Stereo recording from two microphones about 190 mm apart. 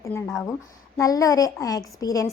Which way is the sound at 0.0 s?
15° left (ahead or behind).